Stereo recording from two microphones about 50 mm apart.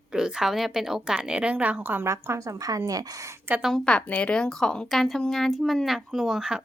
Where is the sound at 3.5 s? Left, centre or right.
Right.